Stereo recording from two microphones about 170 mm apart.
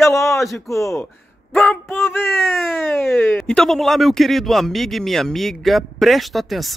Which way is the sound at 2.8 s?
Centre (ahead or behind).